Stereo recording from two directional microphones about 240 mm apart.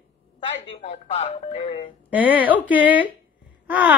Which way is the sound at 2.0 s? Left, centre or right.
Centre.